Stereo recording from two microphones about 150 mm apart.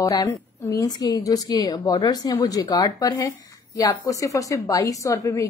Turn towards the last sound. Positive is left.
turn(degrees=20)  # may be behind; listen again after turning